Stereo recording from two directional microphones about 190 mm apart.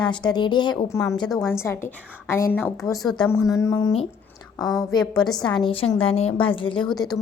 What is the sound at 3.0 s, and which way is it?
A woman's voice, 20° left (ahead or behind).